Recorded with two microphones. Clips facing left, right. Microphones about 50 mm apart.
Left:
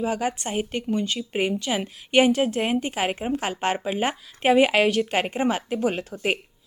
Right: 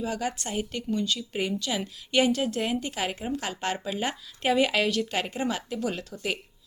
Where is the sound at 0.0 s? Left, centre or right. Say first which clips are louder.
Left 5 dB; left.